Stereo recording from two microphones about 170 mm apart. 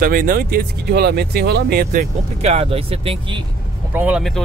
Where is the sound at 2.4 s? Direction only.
35° right (ahead or behind).